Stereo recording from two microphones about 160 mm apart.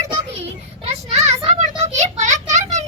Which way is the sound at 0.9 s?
40° right (ahead or behind).